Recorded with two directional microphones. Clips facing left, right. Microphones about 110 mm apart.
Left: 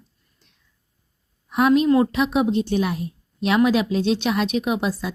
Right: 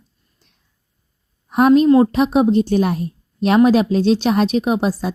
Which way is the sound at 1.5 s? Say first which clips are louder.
Right 5 dB; 40° right (ahead or behind).